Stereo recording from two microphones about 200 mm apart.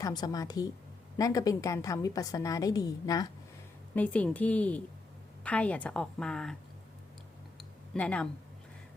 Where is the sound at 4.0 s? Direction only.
5° left (ahead or behind).